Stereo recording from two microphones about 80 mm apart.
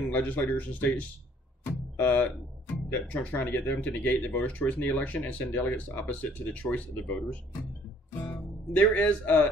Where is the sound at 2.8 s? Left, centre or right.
Left.